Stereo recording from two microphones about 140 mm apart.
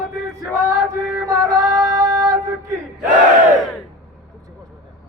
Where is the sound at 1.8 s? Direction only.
25° right (ahead or behind).